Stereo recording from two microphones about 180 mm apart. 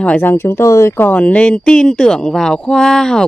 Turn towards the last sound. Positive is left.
turn(degrees=5)  # may be behind; listen again after turning